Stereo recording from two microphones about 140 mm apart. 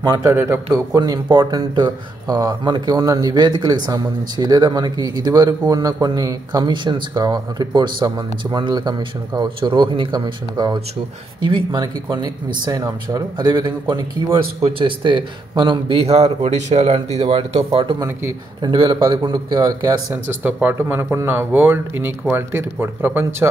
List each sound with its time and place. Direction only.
0.0 s speech: 25° right (ahead or behind)
11.8 s a man's voice: 30° right (ahead or behind); by 17.2 s 50° right (ahead or behind)
17.2 s a man's voice: 40° right (ahead or behind)
20.4 s speech: 15° right (ahead or behind)